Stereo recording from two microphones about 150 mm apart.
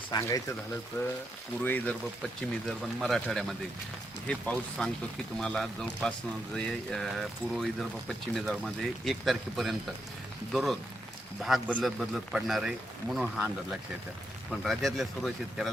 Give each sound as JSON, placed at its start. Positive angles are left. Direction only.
{"t": 0.1, "sound": "speech", "side_deg": 20}
{"t": 0.9, "sound": "speech", "side_deg": 10}